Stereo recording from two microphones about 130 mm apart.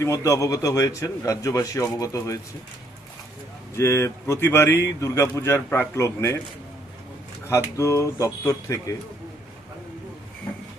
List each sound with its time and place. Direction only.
0.0 s a man's voice: 25° left (ahead or behind)
3.8 s a man's voice: 20° left (ahead or behind)
7.4 s a man's voice: 20° left (ahead or behind)